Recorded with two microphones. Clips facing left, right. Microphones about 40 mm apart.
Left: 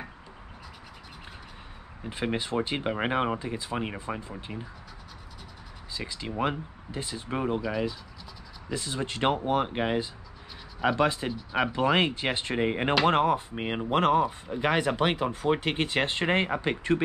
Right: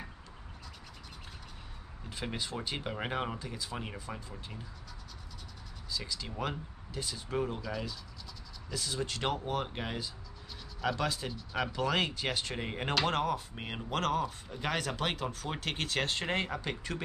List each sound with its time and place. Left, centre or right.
2.0 s speech: left
5.9 s speech: left